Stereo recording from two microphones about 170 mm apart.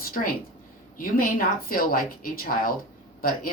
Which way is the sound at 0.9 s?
55° left (ahead or behind).